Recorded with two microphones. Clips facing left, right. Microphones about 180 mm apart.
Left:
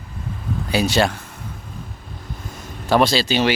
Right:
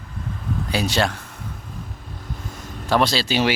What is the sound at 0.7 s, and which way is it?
Speech, 5° left (ahead or behind).